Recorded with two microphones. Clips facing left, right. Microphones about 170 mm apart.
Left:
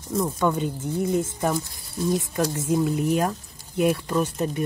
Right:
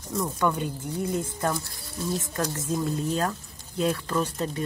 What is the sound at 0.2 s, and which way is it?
Speech, 20° left (ahead or behind).